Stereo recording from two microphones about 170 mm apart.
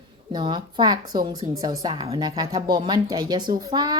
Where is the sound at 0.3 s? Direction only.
25° right (ahead or behind).